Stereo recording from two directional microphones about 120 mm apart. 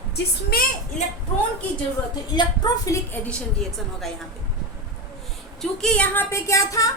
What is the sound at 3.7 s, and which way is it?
Speech, centre (ahead or behind).